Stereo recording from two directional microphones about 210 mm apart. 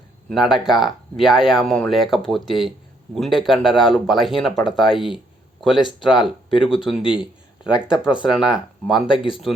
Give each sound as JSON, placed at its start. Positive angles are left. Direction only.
{"t": 0.3, "sound": "speech", "side_deg": 0}
{"t": 6.2, "sound": "speech", "side_deg": 25}
{"t": 6.7, "sound": "speech", "side_deg": 0}